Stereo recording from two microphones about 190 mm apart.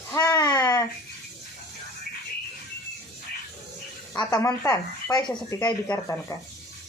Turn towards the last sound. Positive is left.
turn(degrees=15)  # may be behind; listen again after turning